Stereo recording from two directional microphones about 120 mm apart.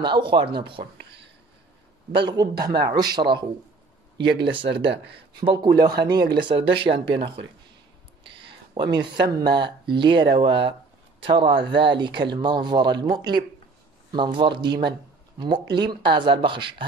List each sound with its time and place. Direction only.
0.0 s speech: 40° right (ahead or behind)
2.1 s speech: 35° right (ahead or behind)
8.7 s speech: 35° right (ahead or behind)